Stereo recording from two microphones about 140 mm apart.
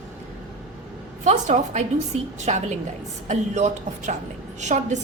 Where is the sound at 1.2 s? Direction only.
55° right (ahead or behind).